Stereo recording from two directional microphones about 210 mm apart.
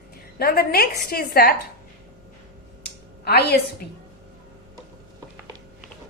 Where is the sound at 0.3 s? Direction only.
45° left (ahead or behind).